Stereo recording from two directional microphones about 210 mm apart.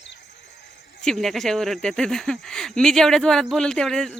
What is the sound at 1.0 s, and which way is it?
Speech, centre (ahead or behind).